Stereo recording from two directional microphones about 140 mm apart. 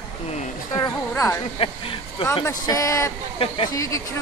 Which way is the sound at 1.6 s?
40° left (ahead or behind).